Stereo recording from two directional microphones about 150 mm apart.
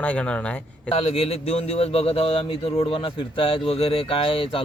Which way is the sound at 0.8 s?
40° left (ahead or behind).